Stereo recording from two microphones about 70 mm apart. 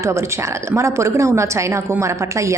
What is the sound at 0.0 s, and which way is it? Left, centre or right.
A woman's voice, right.